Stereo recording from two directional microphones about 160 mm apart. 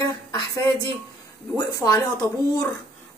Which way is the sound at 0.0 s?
25° left (ahead or behind).